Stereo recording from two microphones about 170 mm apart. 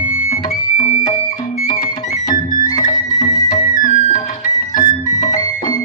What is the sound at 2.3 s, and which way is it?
Music, 25° left (ahead or behind).